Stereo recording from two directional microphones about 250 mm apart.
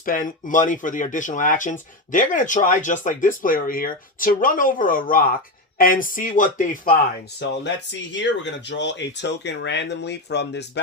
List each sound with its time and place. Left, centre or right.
0.0 s speech: left
7.4 s speech: left